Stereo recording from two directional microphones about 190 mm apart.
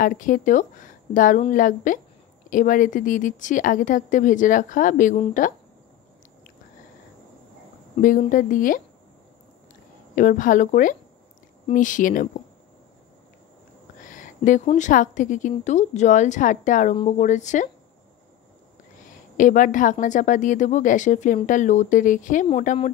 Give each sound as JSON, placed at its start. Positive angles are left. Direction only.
{"t": 0.0, "sound": "a woman's voice", "side_deg": 45}
{"t": 7.9, "sound": "a woman's voice", "side_deg": 40}
{"t": 10.1, "sound": "a woman's voice", "side_deg": 45}
{"t": 14.0, "sound": "a sound", "side_deg": 45}
{"t": 14.8, "sound": "a woman's voice", "side_deg": 40}
{"t": 19.0, "sound": "a woman's voice", "side_deg": 45}